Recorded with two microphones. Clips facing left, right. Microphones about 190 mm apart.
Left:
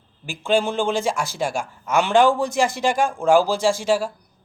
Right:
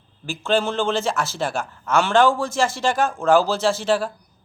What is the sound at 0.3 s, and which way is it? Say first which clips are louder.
A man's voice: left 1 dB; 15° left (ahead or behind).